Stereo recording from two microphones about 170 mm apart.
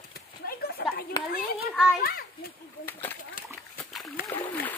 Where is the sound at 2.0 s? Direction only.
60° left (ahead or behind).